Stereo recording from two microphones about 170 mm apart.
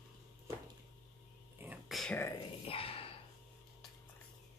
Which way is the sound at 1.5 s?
5° right (ahead or behind).